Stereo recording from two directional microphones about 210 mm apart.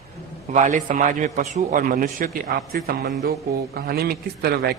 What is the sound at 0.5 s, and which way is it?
A man's voice, 35° right (ahead or behind).